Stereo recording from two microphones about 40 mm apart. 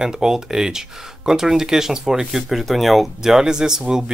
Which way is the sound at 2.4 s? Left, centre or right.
Centre.